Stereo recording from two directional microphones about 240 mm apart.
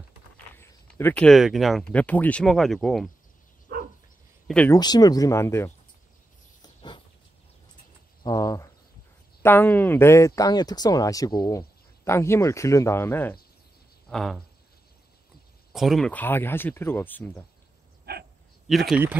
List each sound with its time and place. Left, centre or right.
0.6 s speech: centre
4.5 s speech: centre
4.7 s speech: centre
6.6 s a sound: centre
8.2 s cricket: centre
9.4 s speech: centre
15.7 s speech: centre
18.7 s speech: centre